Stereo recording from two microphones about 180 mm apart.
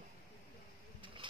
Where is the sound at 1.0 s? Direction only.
30° right (ahead or behind).